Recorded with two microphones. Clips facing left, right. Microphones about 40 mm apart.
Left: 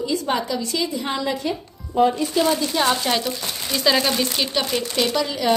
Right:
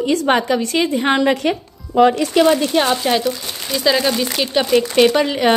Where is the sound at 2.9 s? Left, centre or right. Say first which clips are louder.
Right 5 dB; centre.